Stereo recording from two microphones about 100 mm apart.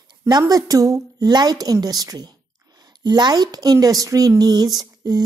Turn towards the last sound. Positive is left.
turn(degrees=-40)  # may be behind; listen again after turning